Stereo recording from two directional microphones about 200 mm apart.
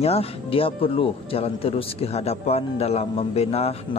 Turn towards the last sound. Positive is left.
turn(degrees=30)  # may be behind; listen again after turning